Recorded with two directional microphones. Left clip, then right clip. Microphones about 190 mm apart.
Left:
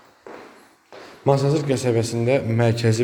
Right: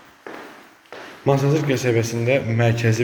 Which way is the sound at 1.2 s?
30° left (ahead or behind).